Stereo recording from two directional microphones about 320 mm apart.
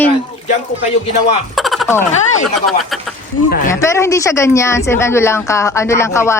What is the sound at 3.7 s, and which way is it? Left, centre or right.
Speech, centre.